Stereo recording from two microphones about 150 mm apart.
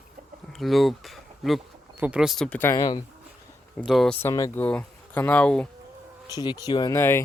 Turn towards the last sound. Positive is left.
turn(degrees=15)  # may be behind; listen again after turning